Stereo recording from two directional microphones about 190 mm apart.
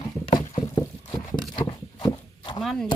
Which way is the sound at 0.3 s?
30° left (ahead or behind).